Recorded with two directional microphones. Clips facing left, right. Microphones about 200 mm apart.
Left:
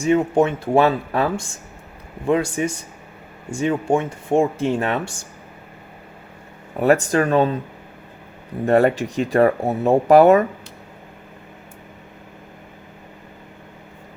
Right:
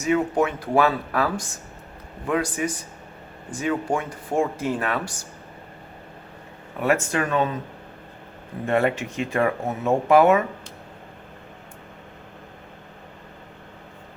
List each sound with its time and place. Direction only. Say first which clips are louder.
0.0 s speech: left 4 dB; 25° left (ahead or behind)
6.7 s speech: left 6 dB; 35° left (ahead or behind)
8.6 s speech: left 6 dB; 35° left (ahead or behind)